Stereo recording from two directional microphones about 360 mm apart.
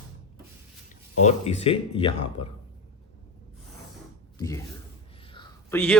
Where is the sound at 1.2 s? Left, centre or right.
Centre.